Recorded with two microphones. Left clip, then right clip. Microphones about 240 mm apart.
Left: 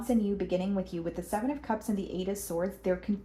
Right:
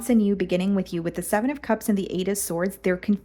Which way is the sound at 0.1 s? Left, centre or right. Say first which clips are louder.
Right 7 dB; right.